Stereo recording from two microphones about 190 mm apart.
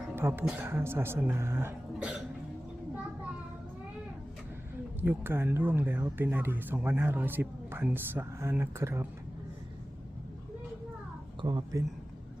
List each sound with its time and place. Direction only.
0.2 s speech: 10° right (ahead or behind)
4.9 s speech: 10° right (ahead or behind)
11.4 s speech: 20° right (ahead or behind)